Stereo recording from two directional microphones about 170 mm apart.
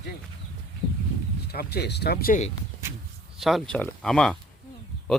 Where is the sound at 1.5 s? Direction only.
65° left (ahead or behind).